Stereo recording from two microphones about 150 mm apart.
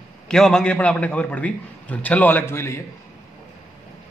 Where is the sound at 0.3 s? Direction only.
5° left (ahead or behind).